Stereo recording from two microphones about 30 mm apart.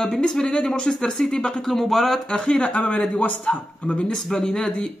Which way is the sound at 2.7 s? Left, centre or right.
Left.